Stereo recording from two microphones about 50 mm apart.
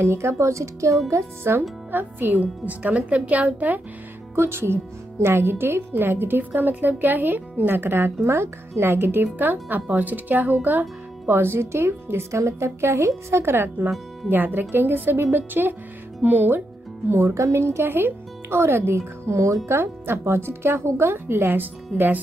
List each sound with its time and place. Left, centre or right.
0.0 s speech: right
1.4 s a woman's voice: right
2.4 s speech: right
4.4 s a woman's voice: right
14.3 s a woman's voice: right
17.3 s speech: right
19.8 s a woman's voice: right